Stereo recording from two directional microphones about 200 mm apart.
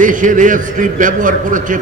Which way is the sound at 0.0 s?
40° right (ahead or behind).